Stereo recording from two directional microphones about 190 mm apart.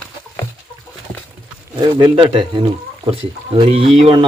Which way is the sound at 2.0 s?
25° right (ahead or behind).